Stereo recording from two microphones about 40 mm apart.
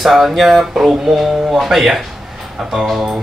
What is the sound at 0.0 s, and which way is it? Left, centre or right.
Speech, centre.